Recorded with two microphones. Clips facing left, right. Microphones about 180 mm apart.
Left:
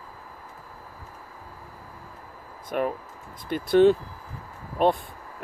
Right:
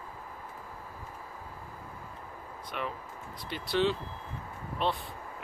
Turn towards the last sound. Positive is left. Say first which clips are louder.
# left 9 dB
turn(degrees=50)  # may be behind; listen again after turning